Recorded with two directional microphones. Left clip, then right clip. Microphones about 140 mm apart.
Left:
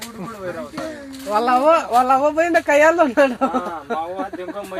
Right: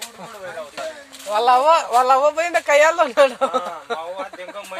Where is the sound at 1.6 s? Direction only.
35° right (ahead or behind).